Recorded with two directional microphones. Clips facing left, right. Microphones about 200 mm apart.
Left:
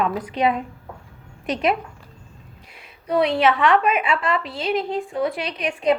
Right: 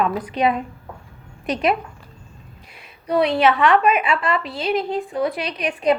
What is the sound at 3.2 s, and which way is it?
A woman's voice, 25° left (ahead or behind).